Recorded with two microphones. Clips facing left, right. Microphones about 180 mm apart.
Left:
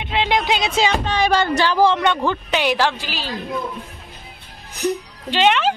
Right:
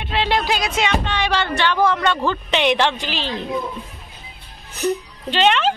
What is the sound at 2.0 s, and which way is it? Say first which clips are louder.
Speech: left 1 dB; 10° left (ahead or behind).